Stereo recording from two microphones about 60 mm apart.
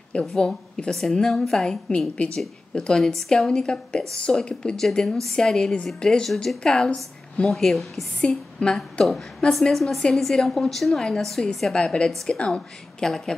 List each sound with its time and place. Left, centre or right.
0.1 s a woman's voice: centre
8.2 s a woman's voice: centre